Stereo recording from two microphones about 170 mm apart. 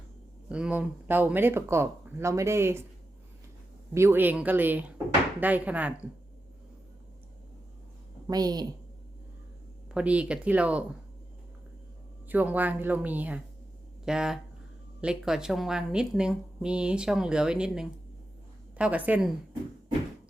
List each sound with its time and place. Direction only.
0.4 s speech: 5° right (ahead or behind)
3.9 s speech: 15° right (ahead or behind)
8.3 s a woman's voice: 20° right (ahead or behind)
9.9 s speech: 5° right (ahead or behind)
12.3 s a woman's voice: 10° right (ahead or behind)